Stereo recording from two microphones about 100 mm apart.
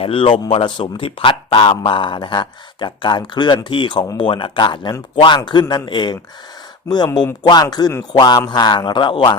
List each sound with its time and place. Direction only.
0.0 s speech: 65° left (ahead or behind)